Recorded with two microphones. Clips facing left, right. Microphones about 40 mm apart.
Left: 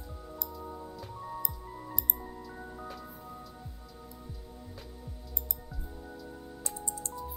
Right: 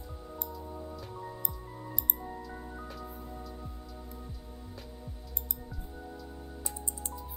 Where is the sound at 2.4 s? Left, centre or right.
Centre.